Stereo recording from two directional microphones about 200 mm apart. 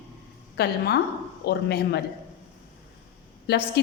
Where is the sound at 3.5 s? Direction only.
55° left (ahead or behind).